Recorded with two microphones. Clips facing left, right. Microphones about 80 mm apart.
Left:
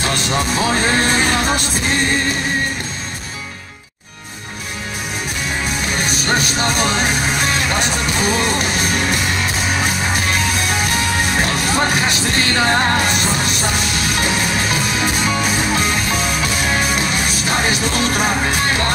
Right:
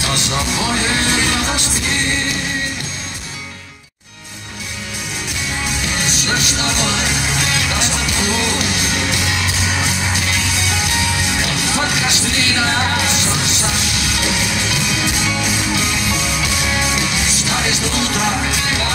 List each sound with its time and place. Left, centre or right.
0.0 s music: left
6.0 s music: left
10.8 s music: left